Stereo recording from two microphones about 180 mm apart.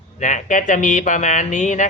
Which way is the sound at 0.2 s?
45° left (ahead or behind).